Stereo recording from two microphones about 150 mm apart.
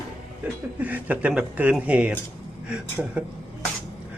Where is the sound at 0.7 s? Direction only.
10° right (ahead or behind).